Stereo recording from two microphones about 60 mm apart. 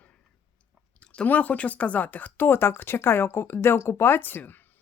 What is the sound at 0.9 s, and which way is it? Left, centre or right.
Speech, centre.